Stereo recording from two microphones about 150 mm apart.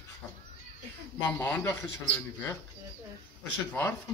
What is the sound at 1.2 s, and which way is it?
Speech, 15° left (ahead or behind).